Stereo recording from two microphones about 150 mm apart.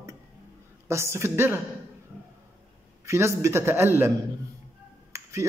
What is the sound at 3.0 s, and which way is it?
Speech, 20° right (ahead or behind).